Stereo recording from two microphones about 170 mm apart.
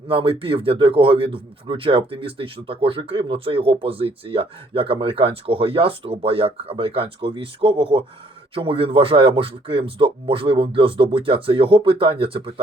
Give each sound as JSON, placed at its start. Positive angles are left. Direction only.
{"t": 0.1, "sound": "speech", "side_deg": -30}